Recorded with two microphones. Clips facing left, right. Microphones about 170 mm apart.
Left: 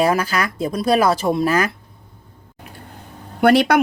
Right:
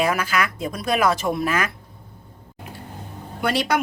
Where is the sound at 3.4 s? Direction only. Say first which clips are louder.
Left 8 dB; 60° left (ahead or behind).